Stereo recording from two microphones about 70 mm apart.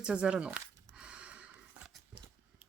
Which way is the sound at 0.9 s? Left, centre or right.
Centre.